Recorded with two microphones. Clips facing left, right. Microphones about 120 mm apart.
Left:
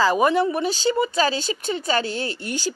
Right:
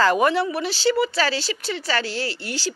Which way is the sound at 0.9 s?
20° left (ahead or behind).